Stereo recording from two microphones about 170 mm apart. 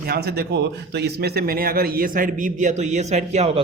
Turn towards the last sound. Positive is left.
turn(degrees=-40)  # may be behind; listen again after turning